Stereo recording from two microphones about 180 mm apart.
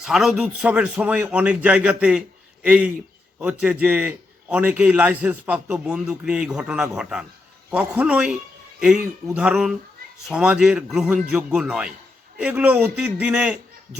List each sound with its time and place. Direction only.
0.0 s a man's voice: centre (ahead or behind)